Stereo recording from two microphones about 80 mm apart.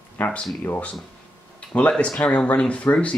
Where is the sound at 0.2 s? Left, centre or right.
Centre.